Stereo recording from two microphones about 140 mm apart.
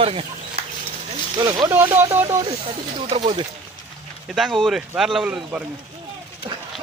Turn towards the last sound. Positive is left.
turn(degrees=-5)  # may be behind; listen again after turning